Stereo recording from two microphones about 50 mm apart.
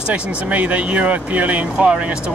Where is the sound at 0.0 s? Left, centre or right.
Right.